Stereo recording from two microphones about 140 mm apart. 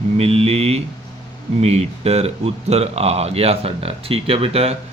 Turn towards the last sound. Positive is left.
turn(degrees=-45)  # may be behind; listen again after turning